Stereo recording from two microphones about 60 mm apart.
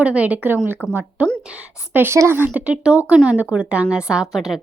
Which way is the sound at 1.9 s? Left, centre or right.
Right.